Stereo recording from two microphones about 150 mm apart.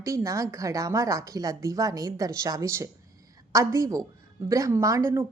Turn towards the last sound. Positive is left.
turn(degrees=-20)  # may be behind; listen again after turning